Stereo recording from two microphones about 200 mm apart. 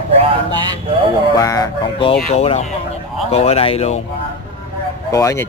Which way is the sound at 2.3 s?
30° left (ahead or behind).